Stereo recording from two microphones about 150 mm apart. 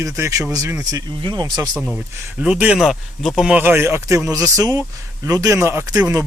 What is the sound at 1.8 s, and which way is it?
Speech, 15° right (ahead or behind).